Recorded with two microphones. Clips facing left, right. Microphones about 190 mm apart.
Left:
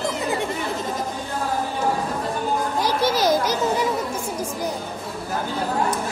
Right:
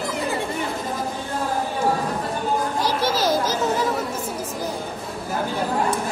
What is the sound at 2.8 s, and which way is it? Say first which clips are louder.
Children playing: left 3 dB; 15° left (ahead or behind).